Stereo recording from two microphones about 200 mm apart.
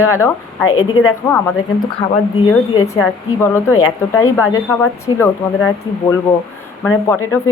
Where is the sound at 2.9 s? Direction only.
10° left (ahead or behind).